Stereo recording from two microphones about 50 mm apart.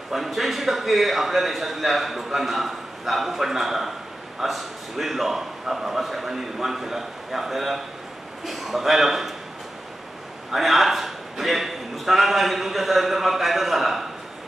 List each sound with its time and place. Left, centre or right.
0.1 s a man's voice: centre
10.5 s a man's voice: centre